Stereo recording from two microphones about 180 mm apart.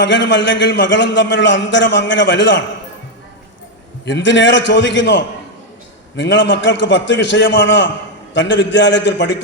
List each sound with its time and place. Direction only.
0.0 s a man's voice: 90° left
4.0 s a man's voice: 90° left